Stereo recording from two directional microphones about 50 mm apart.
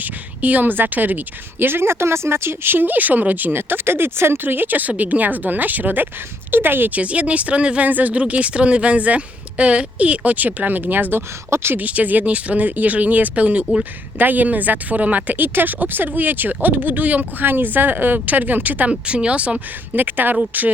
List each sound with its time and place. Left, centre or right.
0.0 s speech: right
6.9 s speech: right
7.9 s speech: right
11.5 s speech: right
11.8 s speech: right
18.9 s speech: right
20.0 s speech: right